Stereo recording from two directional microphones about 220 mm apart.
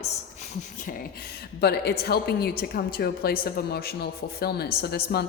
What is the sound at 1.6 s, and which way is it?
A woman's voice, 45° left (ahead or behind).